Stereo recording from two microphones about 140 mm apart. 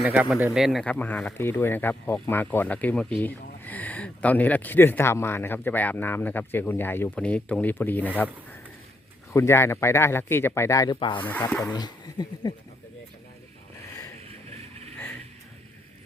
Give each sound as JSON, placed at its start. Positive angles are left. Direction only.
{"t": 0.0, "sound": "speech", "side_deg": -5}
{"t": 0.9, "sound": "speech", "side_deg": 10}
{"t": 9.3, "sound": "speech", "side_deg": 20}
{"t": 11.0, "sound": "speech", "side_deg": 35}